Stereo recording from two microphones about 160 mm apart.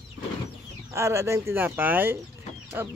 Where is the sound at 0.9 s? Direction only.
15° right (ahead or behind).